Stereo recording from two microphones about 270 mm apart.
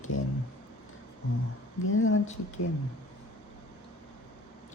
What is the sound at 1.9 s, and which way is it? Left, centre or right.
Speech, left.